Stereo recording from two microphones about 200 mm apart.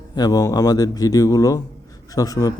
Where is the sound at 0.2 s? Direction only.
15° left (ahead or behind).